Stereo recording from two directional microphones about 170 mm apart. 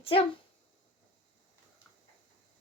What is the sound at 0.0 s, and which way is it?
Speech, 35° left (ahead or behind).